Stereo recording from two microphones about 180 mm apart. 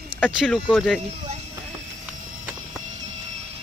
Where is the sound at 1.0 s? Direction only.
35° right (ahead or behind).